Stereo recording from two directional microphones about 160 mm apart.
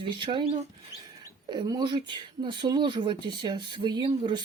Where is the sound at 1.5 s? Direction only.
25° right (ahead or behind).